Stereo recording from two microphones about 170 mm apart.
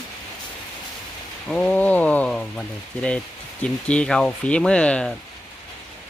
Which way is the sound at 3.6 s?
5° left (ahead or behind).